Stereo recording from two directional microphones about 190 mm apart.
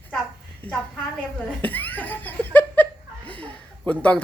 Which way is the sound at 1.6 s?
10° left (ahead or behind).